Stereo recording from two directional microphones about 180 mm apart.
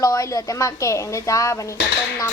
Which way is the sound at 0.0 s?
15° left (ahead or behind).